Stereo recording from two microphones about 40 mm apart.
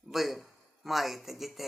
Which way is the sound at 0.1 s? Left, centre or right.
Centre.